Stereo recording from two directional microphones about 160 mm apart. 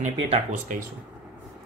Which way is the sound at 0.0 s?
50° right (ahead or behind).